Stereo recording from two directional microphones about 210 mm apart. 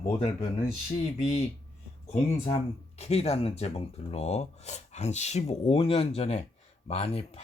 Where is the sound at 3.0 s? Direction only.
30° left (ahead or behind).